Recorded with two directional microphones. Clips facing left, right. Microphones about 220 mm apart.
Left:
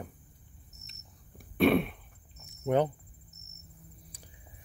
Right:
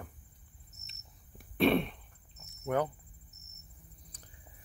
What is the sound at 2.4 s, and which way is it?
Cricket, 25° left (ahead or behind).